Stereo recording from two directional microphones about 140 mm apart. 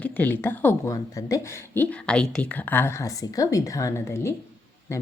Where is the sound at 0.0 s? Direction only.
10° left (ahead or behind).